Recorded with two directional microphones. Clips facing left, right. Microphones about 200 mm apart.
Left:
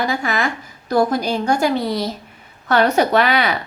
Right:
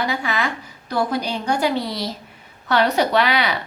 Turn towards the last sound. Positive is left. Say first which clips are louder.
# left 2 dB
turn(degrees=45)  # may be behind; listen again after turning